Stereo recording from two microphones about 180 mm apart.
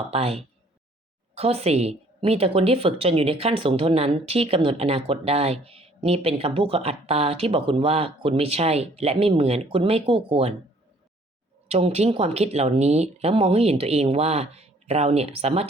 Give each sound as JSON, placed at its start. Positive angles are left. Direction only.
{"t": 0.1, "sound": "a woman's voice", "side_deg": -35}
{"t": 11.7, "sound": "a woman's voice", "side_deg": -35}